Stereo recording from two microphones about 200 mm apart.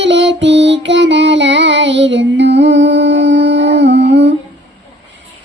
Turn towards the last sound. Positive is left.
turn(degrees=-60)  # may be behind; listen again after turning